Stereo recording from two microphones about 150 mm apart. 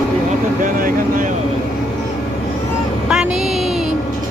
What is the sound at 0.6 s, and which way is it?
Vehicle, 65° right (ahead or behind).